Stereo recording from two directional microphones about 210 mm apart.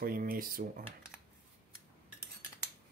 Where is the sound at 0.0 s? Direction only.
45° right (ahead or behind).